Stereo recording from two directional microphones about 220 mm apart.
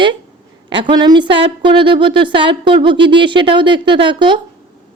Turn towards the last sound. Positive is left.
turn(degrees=-20)  # may be behind; listen again after turning